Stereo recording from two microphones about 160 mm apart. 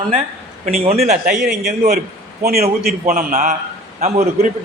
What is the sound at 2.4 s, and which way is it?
A man's voice, 75° right (ahead or behind).